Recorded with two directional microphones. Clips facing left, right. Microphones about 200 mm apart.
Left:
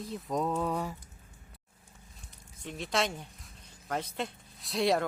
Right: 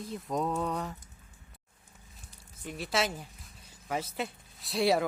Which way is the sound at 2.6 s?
5° right (ahead or behind).